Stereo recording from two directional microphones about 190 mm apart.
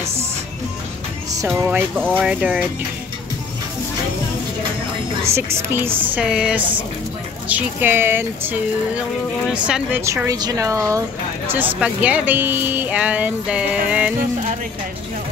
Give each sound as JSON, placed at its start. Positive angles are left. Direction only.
{"t": 1.3, "sound": "speech", "side_deg": -15}
{"t": 5.3, "sound": "speech", "side_deg": -10}